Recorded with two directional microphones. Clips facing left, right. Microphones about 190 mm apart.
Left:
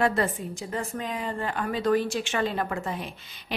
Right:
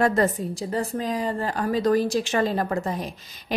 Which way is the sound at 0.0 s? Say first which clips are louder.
Right 4 dB; 40° right (ahead or behind).